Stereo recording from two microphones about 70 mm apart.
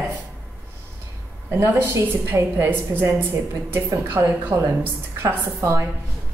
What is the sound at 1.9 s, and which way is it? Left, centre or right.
A woman's voice, right.